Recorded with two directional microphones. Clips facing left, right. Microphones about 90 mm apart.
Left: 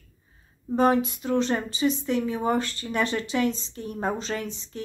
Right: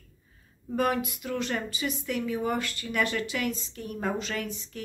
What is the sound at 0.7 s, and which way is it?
A woman's voice, 30° left (ahead or behind).